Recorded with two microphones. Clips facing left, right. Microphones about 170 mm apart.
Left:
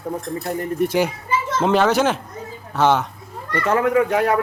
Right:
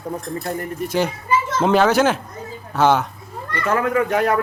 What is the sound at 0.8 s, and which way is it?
Speech, 70° left (ahead or behind).